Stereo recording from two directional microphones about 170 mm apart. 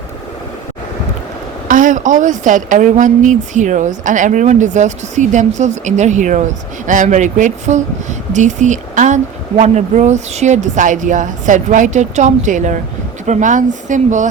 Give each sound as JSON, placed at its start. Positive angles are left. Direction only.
{"t": 1.6, "sound": "a woman's voice", "side_deg": -50}